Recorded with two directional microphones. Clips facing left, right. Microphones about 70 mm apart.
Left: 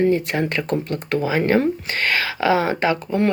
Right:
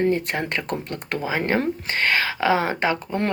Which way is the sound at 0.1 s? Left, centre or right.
Right.